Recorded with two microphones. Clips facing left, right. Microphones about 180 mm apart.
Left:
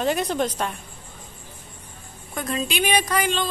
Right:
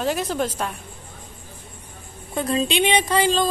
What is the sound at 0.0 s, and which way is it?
Speech, centre (ahead or behind).